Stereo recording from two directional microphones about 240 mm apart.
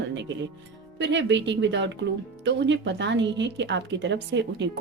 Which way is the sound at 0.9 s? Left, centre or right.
Right.